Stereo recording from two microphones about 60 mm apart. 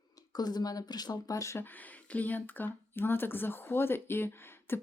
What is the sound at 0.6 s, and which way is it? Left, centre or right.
Speech, left.